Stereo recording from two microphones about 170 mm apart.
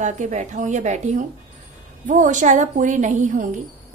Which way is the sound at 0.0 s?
45° right (ahead or behind).